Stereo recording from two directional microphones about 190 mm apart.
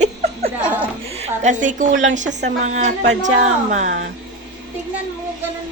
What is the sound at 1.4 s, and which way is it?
A woman's voice, 40° right (ahead or behind).